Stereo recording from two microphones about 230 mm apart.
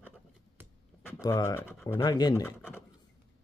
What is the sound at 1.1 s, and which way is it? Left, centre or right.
Speech, centre.